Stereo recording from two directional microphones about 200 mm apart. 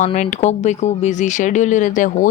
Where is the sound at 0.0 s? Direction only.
35° left (ahead or behind).